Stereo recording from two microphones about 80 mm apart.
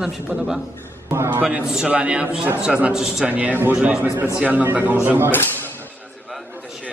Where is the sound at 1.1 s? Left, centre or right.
Right.